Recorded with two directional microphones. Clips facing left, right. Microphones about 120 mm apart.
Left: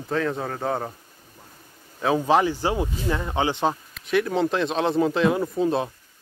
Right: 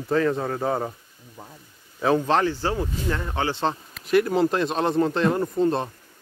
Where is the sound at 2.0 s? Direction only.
5° left (ahead or behind).